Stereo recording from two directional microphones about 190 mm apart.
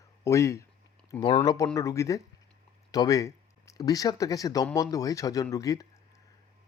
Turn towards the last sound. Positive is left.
turn(degrees=20)  # may be behind; listen again after turning